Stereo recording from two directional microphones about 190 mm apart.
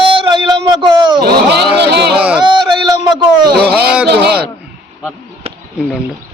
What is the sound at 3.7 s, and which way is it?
Speech, 5° right (ahead or behind).